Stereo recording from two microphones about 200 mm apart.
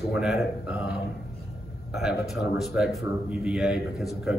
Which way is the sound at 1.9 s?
5° right (ahead or behind).